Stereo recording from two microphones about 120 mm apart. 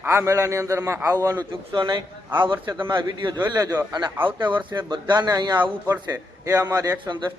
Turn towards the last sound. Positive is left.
turn(degrees=-30)  # may be behind; listen again after turning